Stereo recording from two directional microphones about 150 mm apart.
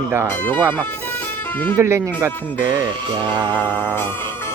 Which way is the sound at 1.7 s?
15° right (ahead or behind).